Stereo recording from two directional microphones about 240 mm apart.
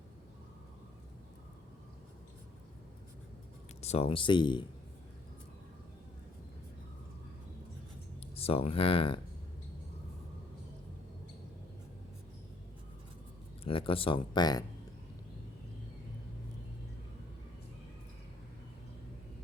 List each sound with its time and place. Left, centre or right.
3.8 s speech: left
8.2 s speech: left
13.7 s speech: left